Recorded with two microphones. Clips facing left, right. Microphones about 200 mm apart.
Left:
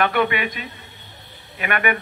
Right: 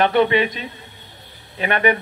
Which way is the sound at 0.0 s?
25° right (ahead or behind).